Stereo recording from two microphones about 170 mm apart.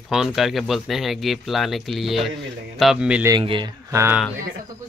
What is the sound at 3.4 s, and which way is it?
Speech, 30° right (ahead or behind).